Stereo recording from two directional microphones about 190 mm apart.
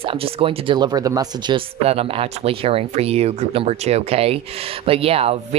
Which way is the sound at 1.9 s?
30° right (ahead or behind).